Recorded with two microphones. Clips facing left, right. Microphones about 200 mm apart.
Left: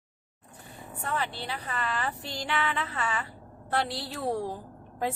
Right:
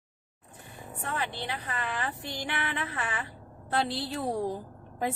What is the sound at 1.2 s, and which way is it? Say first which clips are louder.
A woman's voice: even; 15° right (ahead or behind).